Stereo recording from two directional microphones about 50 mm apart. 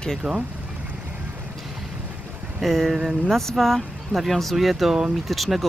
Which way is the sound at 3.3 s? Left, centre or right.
Centre.